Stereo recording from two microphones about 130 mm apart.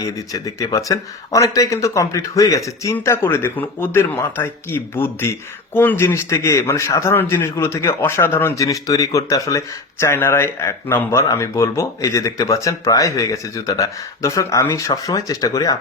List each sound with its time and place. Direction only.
0.0 s speech: 25° left (ahead or behind)